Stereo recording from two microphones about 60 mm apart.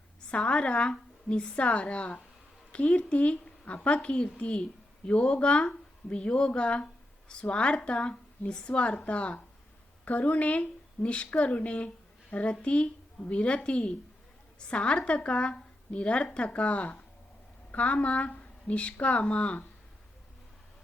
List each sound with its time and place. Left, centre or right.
0.3 s a woman's voice: centre